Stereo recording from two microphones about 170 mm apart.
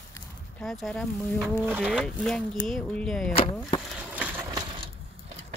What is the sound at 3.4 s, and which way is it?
Chop, 30° left (ahead or behind).